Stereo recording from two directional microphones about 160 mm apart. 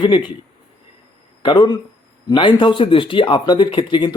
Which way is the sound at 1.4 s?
30° left (ahead or behind).